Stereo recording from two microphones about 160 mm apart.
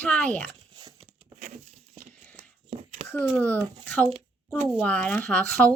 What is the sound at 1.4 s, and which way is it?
Patter, 50° right (ahead or behind).